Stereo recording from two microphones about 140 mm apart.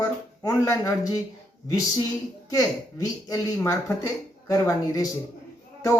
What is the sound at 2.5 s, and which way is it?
Speech, 25° left (ahead or behind).